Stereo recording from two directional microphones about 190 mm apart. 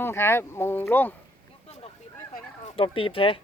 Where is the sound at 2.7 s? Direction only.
30° left (ahead or behind).